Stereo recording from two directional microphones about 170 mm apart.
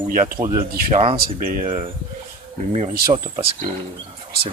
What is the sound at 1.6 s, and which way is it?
Speech, 30° right (ahead or behind).